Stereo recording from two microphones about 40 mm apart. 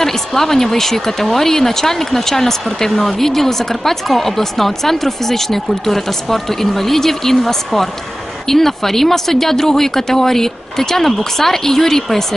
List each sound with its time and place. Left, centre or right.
0.0 s speech: centre